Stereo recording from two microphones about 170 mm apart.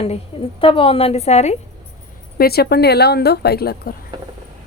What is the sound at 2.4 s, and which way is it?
A woman's voice, 70° left (ahead or behind).